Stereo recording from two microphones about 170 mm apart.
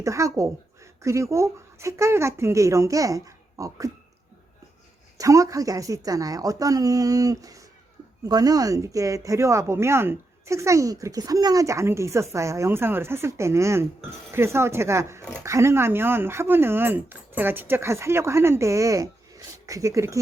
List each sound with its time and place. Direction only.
0.0 s speech: 20° right (ahead or behind)
5.1 s a woman's voice: 20° right (ahead or behind)